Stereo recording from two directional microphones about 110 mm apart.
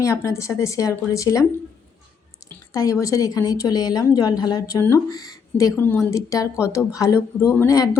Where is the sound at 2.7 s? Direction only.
30° left (ahead or behind).